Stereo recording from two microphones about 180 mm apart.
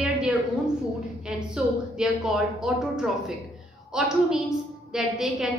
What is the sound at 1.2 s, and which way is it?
A woman's voice, 5° right (ahead or behind).